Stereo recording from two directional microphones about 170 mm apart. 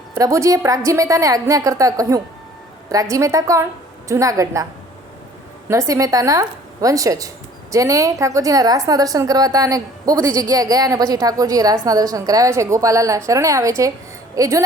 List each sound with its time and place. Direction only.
0.1 s a woman's voice: 20° right (ahead or behind)
5.6 s a woman's voice: 20° right (ahead or behind)